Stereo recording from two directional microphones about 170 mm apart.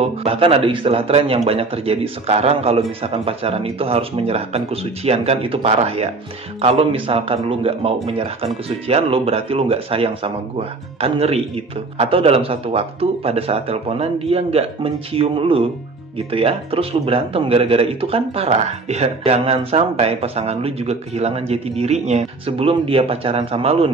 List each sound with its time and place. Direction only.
0.0 s a man's voice: 35° right (ahead or behind)